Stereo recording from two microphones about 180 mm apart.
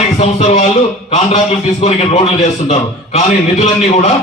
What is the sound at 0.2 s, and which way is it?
A man's voice, 40° left (ahead or behind).